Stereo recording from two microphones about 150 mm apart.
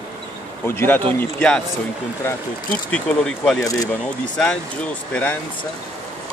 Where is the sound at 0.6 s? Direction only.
15° left (ahead or behind).